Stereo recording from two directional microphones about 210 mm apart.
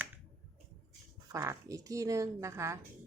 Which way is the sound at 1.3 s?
15° right (ahead or behind).